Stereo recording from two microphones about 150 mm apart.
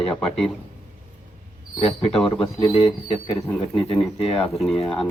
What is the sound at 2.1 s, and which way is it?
Speech, 5° left (ahead or behind).